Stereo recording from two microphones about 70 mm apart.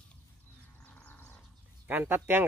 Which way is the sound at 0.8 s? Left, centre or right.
Left.